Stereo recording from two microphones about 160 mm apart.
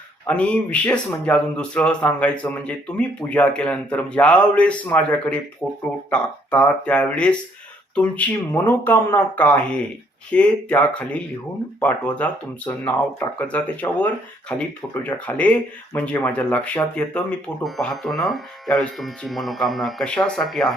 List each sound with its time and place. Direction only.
0.3 s speech: 10° left (ahead or behind)